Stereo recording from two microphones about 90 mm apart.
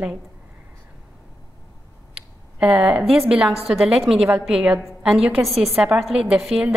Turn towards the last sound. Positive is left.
turn(degrees=-5)  # may be behind; listen again after turning